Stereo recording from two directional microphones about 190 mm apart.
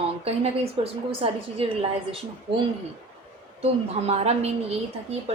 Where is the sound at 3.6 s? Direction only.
35° right (ahead or behind).